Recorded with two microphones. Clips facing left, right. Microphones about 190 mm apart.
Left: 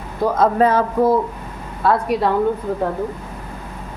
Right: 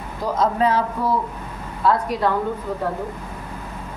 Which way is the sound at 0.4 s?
50° left (ahead or behind).